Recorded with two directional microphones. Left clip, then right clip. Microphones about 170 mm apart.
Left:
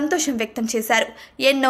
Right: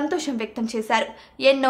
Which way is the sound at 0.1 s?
10° left (ahead or behind).